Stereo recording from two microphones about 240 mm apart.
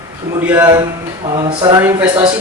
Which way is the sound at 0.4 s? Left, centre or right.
Centre.